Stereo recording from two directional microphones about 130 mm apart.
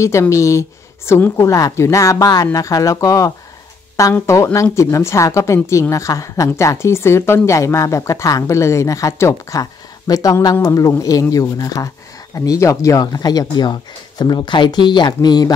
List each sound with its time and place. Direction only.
0.0 s a woman's voice: 25° left (ahead or behind)